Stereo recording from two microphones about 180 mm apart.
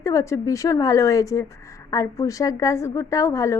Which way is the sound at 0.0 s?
15° left (ahead or behind).